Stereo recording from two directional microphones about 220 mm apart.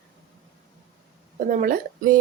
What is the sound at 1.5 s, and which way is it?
Speech, 40° right (ahead or behind).